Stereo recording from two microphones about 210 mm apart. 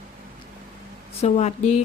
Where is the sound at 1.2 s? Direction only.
30° left (ahead or behind).